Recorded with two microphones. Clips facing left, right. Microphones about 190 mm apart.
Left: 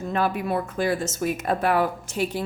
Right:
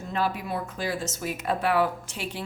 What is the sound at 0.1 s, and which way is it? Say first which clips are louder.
Speech: left 4 dB; 55° left (ahead or behind).